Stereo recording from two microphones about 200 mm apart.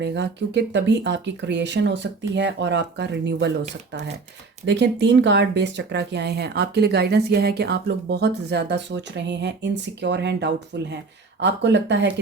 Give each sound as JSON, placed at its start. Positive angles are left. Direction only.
{"t": 0.0, "sound": "speech", "side_deg": -60}